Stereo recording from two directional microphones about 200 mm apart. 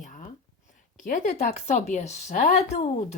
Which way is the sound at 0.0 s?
40° left (ahead or behind).